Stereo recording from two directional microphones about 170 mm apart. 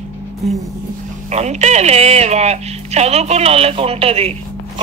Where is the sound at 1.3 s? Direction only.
40° right (ahead or behind).